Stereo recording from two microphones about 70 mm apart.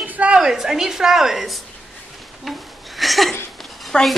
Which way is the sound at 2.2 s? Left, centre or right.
Centre.